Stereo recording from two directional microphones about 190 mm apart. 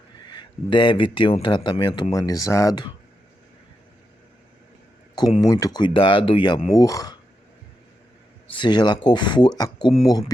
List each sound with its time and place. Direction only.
0.3 s speech: 25° left (ahead or behind)
5.1 s speech: 20° left (ahead or behind)
8.5 s speech: 25° left (ahead or behind)